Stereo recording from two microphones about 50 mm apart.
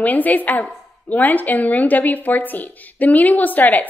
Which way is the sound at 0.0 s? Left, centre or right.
Left.